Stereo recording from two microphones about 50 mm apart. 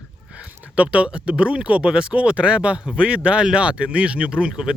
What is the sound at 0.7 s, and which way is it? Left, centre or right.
Speech, right.